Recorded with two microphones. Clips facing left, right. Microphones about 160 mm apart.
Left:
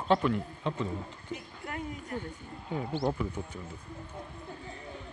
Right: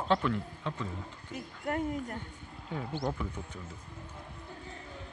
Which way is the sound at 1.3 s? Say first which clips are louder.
Right 5 dB; 50° right (ahead or behind).